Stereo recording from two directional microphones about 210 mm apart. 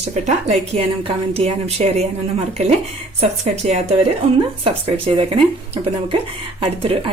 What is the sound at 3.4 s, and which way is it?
Speech, 30° right (ahead or behind).